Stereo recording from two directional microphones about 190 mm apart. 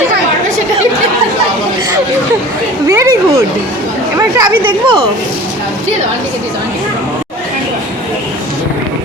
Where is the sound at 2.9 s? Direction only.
15° right (ahead or behind).